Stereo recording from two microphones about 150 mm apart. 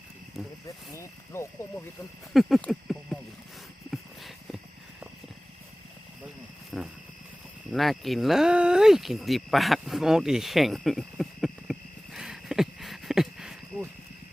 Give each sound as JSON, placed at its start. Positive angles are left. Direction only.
{"t": 0.4, "sound": "speech", "side_deg": 0}
{"t": 0.9, "sound": "speech", "side_deg": 15}
{"t": 2.3, "sound": "a sound", "side_deg": 0}
{"t": 6.7, "sound": "wild animals", "side_deg": 0}
{"t": 7.7, "sound": "cricket", "side_deg": 0}